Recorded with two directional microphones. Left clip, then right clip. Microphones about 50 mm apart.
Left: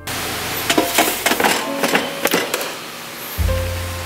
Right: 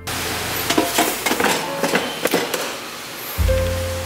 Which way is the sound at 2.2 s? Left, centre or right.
Centre.